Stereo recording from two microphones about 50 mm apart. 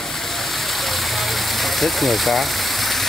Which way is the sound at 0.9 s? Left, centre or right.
Centre.